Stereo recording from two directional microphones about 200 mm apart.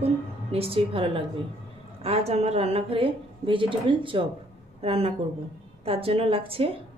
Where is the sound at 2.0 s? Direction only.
30° right (ahead or behind).